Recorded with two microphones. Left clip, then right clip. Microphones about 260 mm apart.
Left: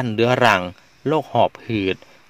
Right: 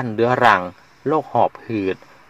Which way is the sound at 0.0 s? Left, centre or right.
Left.